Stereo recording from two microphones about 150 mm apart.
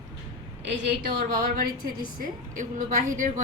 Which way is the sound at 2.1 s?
65° right (ahead or behind).